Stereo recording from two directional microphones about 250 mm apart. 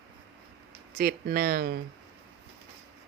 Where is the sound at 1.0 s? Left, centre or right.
Right.